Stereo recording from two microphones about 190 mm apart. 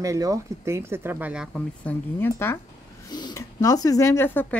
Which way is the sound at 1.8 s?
10° left (ahead or behind).